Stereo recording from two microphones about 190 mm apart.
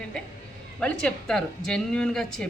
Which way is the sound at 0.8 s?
5° left (ahead or behind).